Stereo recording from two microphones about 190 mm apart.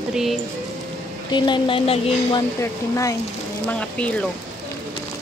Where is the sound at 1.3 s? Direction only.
25° left (ahead or behind); by 4.2 s 5° left (ahead or behind).